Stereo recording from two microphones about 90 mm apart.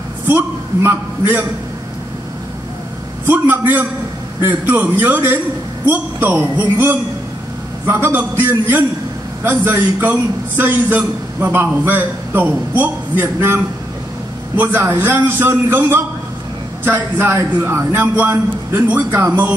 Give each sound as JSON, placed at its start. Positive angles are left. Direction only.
{"t": 0.8, "sound": "a man's voice", "side_deg": -20}
{"t": 3.3, "sound": "a man's voice", "side_deg": -20}
{"t": 14.6, "sound": "a man's voice", "side_deg": -20}